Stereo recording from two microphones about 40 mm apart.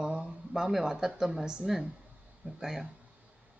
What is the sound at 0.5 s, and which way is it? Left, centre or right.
Speech, centre.